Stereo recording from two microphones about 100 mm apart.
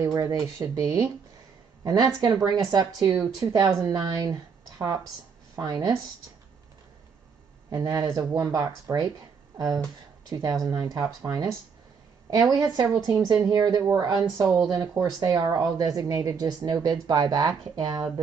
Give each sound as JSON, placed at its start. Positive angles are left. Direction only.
{"t": 0.0, "sound": "speech", "side_deg": -35}
{"t": 7.7, "sound": "speech", "side_deg": -40}
{"t": 10.3, "sound": "speech", "side_deg": -40}
{"t": 12.3, "sound": "speech", "side_deg": -40}